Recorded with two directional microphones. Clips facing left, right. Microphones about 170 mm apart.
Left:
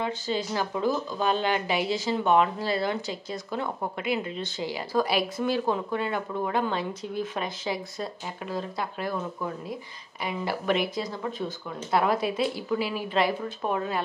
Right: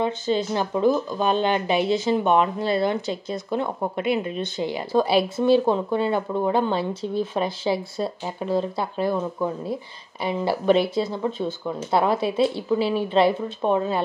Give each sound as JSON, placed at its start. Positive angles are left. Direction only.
{"t": 0.0, "sound": "speech", "side_deg": -20}